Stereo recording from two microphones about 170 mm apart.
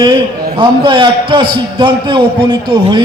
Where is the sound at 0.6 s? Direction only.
25° right (ahead or behind).